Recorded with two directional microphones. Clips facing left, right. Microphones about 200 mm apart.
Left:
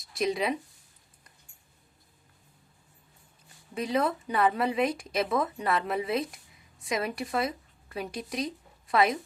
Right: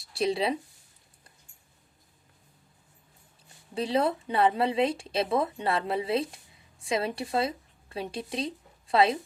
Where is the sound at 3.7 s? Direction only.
30° right (ahead or behind).